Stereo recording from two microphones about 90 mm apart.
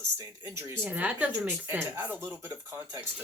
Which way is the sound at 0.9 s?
15° right (ahead or behind).